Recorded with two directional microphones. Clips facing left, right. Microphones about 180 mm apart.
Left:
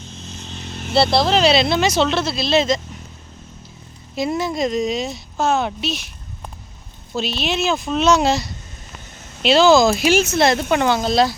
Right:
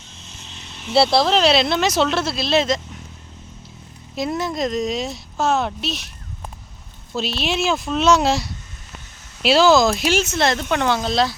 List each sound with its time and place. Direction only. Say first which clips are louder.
0.2 s vehicle: left 7 dB; 35° left (ahead or behind)
0.9 s speech: even; centre (ahead or behind)
4.1 s speech: left 2 dB; centre (ahead or behind)
7.1 s speech: left 1 dB; centre (ahead or behind)